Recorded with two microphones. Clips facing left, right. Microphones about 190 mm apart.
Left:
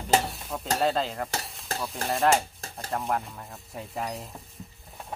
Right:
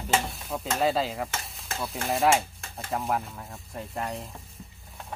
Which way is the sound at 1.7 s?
35° left (ahead or behind).